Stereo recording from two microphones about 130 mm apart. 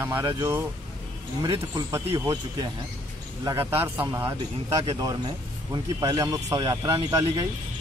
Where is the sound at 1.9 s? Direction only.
20° right (ahead or behind).